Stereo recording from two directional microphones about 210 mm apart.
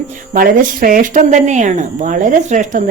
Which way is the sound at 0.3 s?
40° right (ahead or behind).